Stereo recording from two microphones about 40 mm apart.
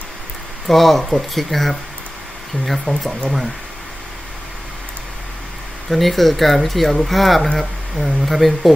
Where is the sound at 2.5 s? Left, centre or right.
Left.